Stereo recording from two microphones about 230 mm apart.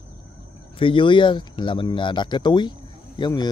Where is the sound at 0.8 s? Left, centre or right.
Left.